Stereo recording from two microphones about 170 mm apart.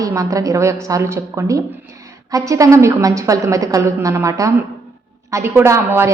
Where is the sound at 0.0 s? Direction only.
20° right (ahead or behind).